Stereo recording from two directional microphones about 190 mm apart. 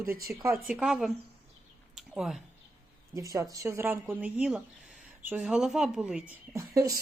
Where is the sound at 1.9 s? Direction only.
Centre (ahead or behind).